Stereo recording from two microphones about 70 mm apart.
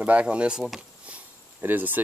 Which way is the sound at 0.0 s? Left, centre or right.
Centre.